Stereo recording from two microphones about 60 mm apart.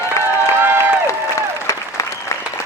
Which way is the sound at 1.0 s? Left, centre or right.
Left.